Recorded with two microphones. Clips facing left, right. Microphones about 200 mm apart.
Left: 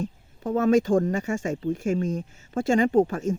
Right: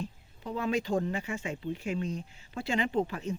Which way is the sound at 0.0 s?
45° left (ahead or behind).